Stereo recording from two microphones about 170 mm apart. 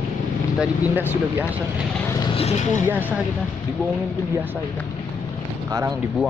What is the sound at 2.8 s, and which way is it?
Speech, 10° right (ahead or behind).